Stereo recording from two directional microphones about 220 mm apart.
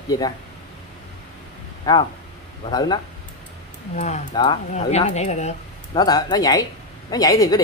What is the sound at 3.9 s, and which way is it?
Speech, 30° left (ahead or behind).